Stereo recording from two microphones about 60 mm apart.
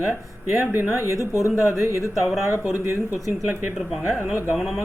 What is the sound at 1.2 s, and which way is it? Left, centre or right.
Speech, left.